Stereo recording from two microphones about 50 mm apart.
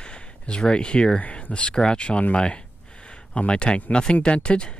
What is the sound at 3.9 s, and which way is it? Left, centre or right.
Speech, centre.